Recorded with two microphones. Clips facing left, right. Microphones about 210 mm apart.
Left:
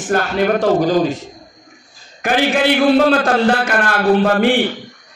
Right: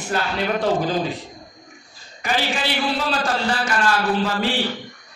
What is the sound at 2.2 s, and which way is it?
A man's voice, 55° left (ahead or behind).